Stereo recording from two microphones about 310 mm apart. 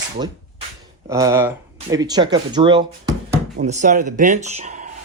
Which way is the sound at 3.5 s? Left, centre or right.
Right.